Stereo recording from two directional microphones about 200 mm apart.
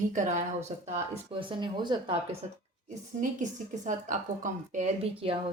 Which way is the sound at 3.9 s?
40° right (ahead or behind).